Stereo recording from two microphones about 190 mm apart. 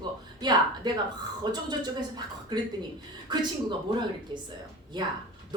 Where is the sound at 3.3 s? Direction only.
25° right (ahead or behind).